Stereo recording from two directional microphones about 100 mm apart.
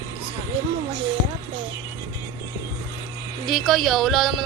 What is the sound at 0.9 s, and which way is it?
Speech, 60° right (ahead or behind).